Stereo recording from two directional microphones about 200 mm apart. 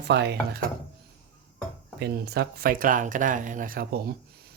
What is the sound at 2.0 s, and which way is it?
Speech, 55° right (ahead or behind).